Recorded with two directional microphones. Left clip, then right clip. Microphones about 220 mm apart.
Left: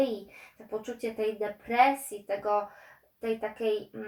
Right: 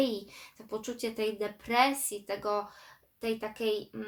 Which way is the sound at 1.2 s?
35° right (ahead or behind).